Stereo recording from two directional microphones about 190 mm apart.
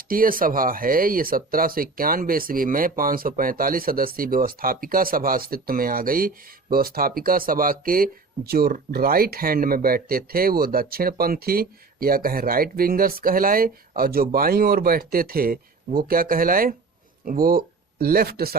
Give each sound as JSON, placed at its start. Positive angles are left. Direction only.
{"t": 0.1, "sound": "speech", "side_deg": -50}